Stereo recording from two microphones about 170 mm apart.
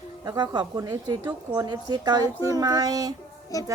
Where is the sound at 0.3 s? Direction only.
25° right (ahead or behind).